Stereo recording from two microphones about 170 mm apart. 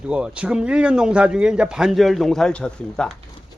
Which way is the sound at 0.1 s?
5° right (ahead or behind).